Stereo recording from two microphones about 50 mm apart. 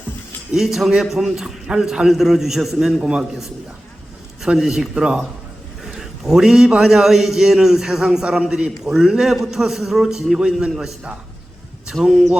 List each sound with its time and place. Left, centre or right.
0.5 s a man's voice: centre
3.0 s a man's voice: centre
4.5 s a man's voice: centre
12.0 s a man's voice: centre